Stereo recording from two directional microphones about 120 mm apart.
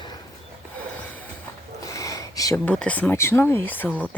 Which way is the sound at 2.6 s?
10° left (ahead or behind).